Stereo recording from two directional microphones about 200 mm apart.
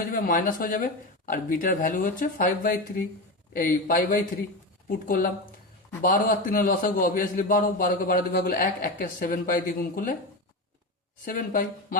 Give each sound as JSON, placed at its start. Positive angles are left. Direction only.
{"t": 0.1, "sound": "a man's voice", "side_deg": 45}
{"t": 11.3, "sound": "a man's voice", "side_deg": 45}